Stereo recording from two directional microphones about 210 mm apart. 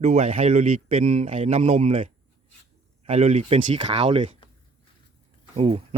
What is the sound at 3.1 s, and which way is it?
Speech, 30° right (ahead or behind).